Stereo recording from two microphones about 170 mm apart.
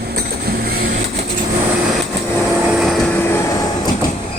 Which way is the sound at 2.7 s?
Centre (ahead or behind).